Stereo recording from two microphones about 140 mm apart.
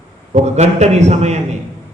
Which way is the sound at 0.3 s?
55° right (ahead or behind).